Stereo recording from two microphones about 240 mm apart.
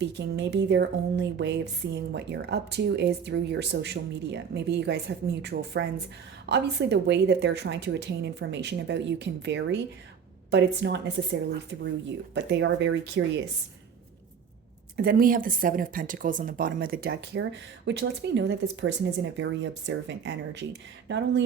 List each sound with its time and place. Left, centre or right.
0.0 s a woman's voice: right
14.9 s a woman's voice: right